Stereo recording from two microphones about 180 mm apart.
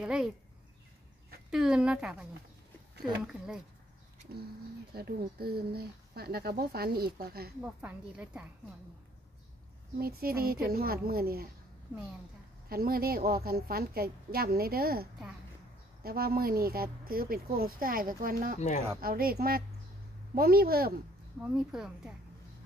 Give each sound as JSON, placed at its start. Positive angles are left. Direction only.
{"t": 0.0, "sound": "speech", "side_deg": -5}
{"t": 1.5, "sound": "speech", "side_deg": -5}
{"t": 4.9, "sound": "speech", "side_deg": -60}
{"t": 7.6, "sound": "a woman's voice", "side_deg": -5}
{"t": 9.9, "sound": "speech", "side_deg": -55}
{"t": 12.6, "sound": "speech", "side_deg": -55}
{"t": 21.4, "sound": "speech", "side_deg": 0}